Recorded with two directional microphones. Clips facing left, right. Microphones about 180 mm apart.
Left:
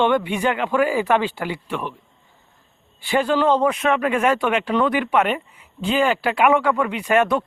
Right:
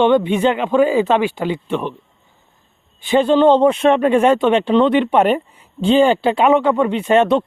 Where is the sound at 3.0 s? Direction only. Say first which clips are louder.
Right 6 dB; 20° right (ahead or behind).